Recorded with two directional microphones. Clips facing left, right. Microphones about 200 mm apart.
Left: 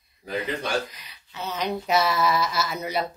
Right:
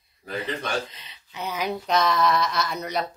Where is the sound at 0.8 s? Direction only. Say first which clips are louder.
Left 1 dB; 25° right (ahead or behind).